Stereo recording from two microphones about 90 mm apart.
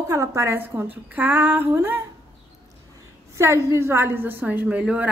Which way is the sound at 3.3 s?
30° right (ahead or behind).